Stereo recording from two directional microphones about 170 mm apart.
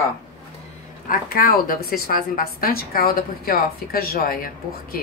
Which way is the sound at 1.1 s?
60° left (ahead or behind).